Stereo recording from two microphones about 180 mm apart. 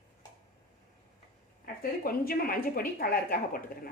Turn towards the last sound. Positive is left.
turn(degrees=55)  # may be behind; listen again after turning